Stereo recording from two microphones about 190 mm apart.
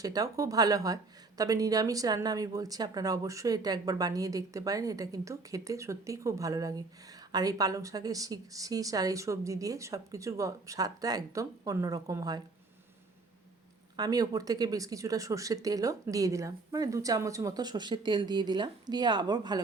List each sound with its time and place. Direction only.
0.0 s speech: 20° right (ahead or behind)
13.9 s speech: 20° right (ahead or behind)